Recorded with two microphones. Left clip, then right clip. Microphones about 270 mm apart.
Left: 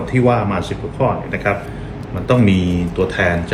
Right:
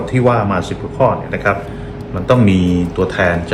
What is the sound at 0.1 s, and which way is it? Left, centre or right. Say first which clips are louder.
Speech: right 2 dB; centre.